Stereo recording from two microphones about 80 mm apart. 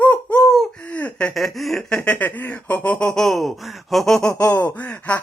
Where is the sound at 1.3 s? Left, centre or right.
Centre.